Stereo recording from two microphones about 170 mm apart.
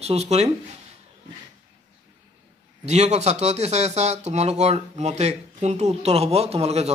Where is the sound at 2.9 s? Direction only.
40° right (ahead or behind).